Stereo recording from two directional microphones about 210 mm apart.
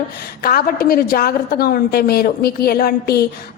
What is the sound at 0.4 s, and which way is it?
A woman's voice, 45° left (ahead or behind).